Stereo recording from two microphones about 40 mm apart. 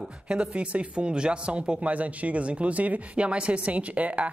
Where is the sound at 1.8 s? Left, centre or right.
Right.